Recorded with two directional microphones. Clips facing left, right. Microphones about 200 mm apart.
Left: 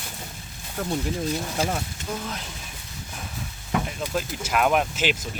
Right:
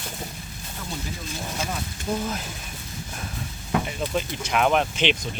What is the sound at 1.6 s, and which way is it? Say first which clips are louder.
Speech: left 5 dB; 30° left (ahead or behind).